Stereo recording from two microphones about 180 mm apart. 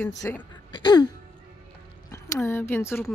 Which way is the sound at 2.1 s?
15° left (ahead or behind).